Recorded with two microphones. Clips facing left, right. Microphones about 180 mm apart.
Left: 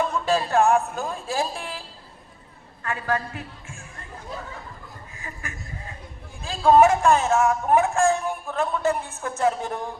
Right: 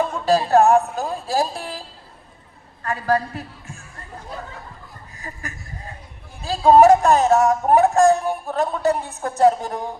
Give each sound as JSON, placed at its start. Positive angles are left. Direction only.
{"t": 0.0, "sound": "speech", "side_deg": -40}
{"t": 2.8, "sound": "a man's voice", "side_deg": -35}
{"t": 5.1, "sound": "chuckle", "side_deg": -40}
{"t": 6.4, "sound": "speech", "side_deg": -35}